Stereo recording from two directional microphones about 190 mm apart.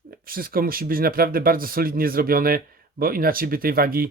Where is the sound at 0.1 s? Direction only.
50° right (ahead or behind).